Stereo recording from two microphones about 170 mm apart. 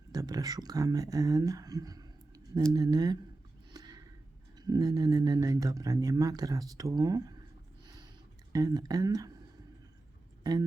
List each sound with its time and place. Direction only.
0.1 s speech: 20° right (ahead or behind)
3.7 s a sound: 25° right (ahead or behind)
4.5 s speech: 20° right (ahead or behind)
8.5 s speech: 20° right (ahead or behind)